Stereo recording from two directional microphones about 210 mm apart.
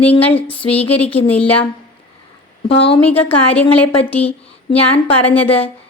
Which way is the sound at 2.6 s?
25° left (ahead or behind).